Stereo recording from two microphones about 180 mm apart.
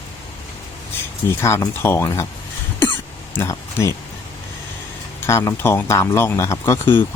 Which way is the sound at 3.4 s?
15° left (ahead or behind).